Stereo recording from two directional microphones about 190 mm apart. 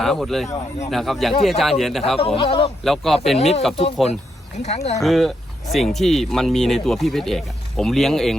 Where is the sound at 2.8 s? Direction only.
Centre (ahead or behind).